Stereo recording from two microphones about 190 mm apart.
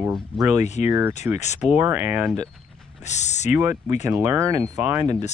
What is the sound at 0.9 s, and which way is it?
Speech, 10° right (ahead or behind).